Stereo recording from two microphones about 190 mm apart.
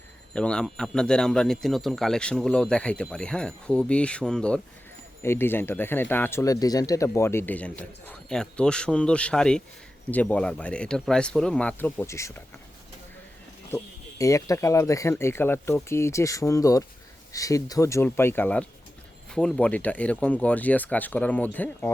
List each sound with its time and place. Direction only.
0.3 s speech: 5° left (ahead or behind)
13.7 s speech: 15° left (ahead or behind)